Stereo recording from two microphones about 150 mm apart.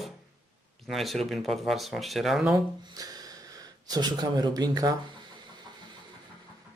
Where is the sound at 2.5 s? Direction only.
25° right (ahead or behind).